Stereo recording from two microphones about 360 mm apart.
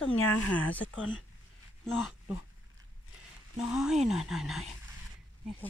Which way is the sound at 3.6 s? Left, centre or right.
Centre.